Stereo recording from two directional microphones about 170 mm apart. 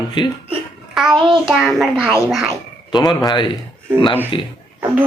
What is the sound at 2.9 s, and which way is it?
A man's voice, 25° left (ahead or behind).